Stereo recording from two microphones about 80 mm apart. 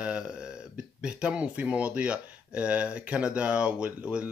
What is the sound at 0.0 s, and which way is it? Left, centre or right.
Burping, centre.